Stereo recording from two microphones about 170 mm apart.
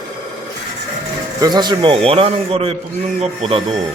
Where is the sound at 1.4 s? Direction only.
25° right (ahead or behind).